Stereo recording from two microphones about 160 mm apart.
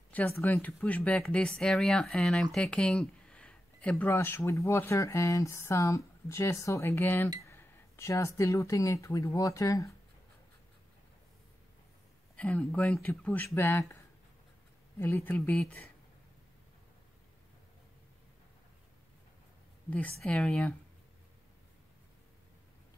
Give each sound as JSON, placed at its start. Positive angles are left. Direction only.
{"t": 0.1, "sound": "speech", "side_deg": 10}
{"t": 12.4, "sound": "speech", "side_deg": 10}
{"t": 15.0, "sound": "speech", "side_deg": 15}
{"t": 19.9, "sound": "speech", "side_deg": 10}